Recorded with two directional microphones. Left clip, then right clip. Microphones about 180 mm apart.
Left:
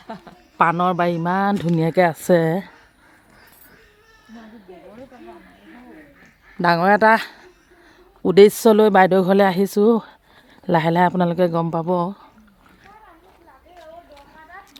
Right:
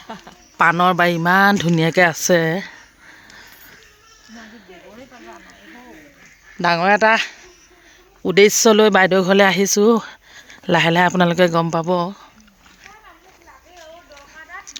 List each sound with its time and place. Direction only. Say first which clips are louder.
0.5 s speech: right 3 dB; 5° right (ahead or behind); by 2.7 s 15° left (ahead or behind)
4.4 s sheep: right 3 dB; 10° left (ahead or behind)
6.6 s speech: even; 20° left (ahead or behind)